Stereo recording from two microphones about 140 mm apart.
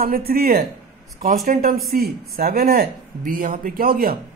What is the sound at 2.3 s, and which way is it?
Speech, 90° right.